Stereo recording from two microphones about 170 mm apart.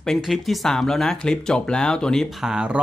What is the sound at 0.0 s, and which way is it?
Speech, centre (ahead or behind).